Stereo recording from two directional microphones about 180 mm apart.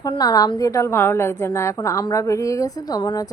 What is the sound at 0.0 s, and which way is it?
A woman's voice, 20° left (ahead or behind).